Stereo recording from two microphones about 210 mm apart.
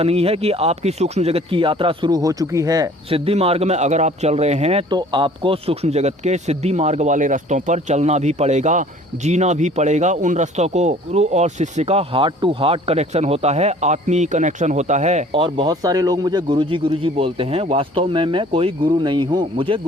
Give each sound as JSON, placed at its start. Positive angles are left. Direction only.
{"t": 0.0, "sound": "speech", "side_deg": -30}